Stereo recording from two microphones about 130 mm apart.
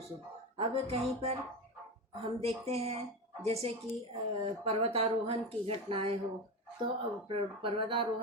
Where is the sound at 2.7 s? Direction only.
50° right (ahead or behind).